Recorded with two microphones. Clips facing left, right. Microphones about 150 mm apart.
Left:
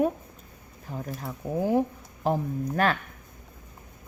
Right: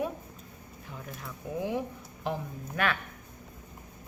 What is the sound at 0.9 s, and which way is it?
Speech, 40° left (ahead or behind).